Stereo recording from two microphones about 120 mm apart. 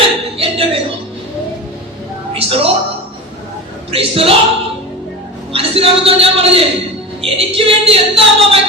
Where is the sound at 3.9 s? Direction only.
50° right (ahead or behind).